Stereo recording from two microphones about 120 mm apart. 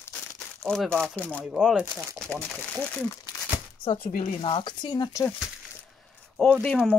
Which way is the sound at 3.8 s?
45° left (ahead or behind).